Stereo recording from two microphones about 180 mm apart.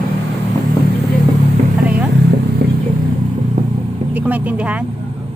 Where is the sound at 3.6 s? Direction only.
45° right (ahead or behind).